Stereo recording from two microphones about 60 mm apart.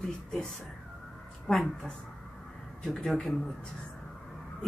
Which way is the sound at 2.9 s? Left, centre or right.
Centre.